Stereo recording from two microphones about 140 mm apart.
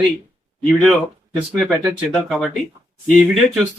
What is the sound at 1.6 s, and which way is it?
Speech, 5° right (ahead or behind).